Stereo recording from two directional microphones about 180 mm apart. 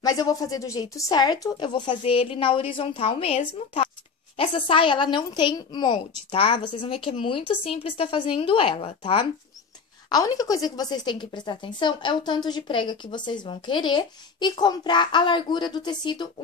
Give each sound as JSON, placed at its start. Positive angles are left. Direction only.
{"t": 0.0, "sound": "a woman's voice", "side_deg": 20}
{"t": 10.0, "sound": "a woman's voice", "side_deg": 20}